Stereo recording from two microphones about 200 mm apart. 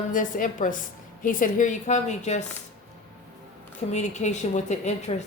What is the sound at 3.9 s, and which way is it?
A woman's voice, 35° left (ahead or behind).